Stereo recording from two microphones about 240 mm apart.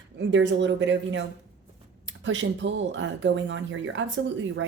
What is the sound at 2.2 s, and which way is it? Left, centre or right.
Speech, right.